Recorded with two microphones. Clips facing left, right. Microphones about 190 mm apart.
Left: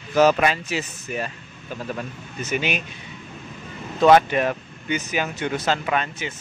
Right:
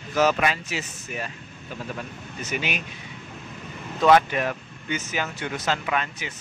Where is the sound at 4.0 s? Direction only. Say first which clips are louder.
Left 3 dB; 30° left (ahead or behind).